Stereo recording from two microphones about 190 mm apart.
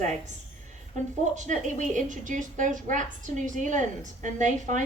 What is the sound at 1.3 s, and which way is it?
A woman's voice, 40° right (ahead or behind).